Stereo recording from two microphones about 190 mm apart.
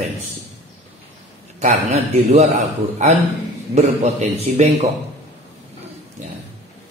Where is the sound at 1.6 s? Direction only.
35° right (ahead or behind).